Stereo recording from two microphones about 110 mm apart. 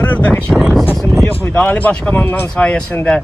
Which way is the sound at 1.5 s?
15° left (ahead or behind).